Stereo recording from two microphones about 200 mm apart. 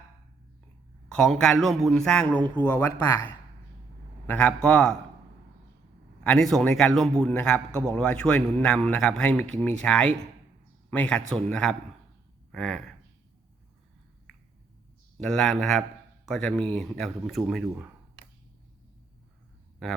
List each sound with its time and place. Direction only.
1.1 s a man's voice: 5° left (ahead or behind)
6.2 s a man's voice: centre (ahead or behind)
15.2 s a man's voice: 5° left (ahead or behind)